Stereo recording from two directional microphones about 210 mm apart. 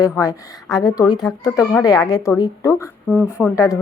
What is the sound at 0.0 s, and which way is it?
Speech, 15° left (ahead or behind).